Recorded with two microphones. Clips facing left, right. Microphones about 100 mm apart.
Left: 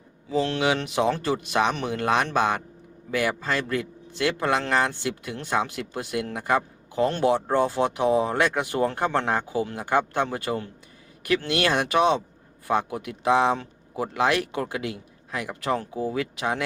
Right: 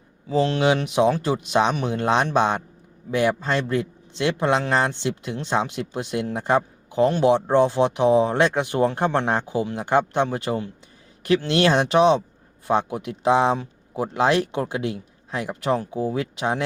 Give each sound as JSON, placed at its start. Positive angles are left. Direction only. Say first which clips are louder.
{"t": 0.3, "sound": "speech", "louder": "right 4 dB", "side_deg": -25}